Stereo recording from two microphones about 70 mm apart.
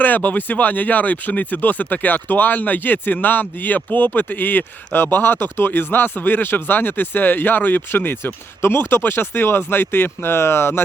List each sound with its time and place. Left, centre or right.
0.0 s speech: left